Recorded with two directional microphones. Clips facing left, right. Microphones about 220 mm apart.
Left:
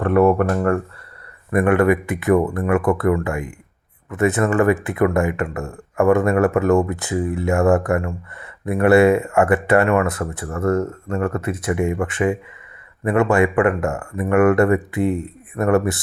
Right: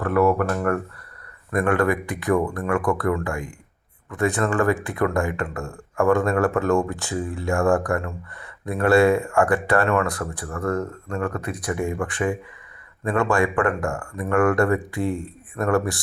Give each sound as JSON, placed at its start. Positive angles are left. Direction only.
{"t": 0.0, "sound": "speech", "side_deg": 25}